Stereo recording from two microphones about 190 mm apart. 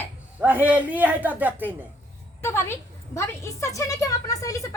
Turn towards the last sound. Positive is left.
turn(degrees=20)  # may be behind; listen again after turning